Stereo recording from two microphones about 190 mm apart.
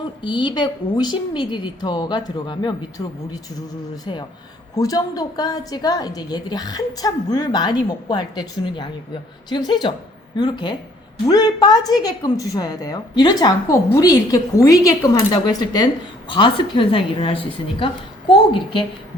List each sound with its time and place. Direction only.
0.2 s a woman's voice: 25° left (ahead or behind)
4.7 s a woman's voice: 20° left (ahead or behind)